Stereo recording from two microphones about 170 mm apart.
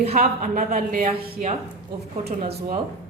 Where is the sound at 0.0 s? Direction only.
40° right (ahead or behind).